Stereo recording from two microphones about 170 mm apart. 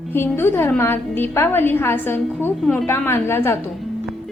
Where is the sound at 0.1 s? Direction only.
15° left (ahead or behind).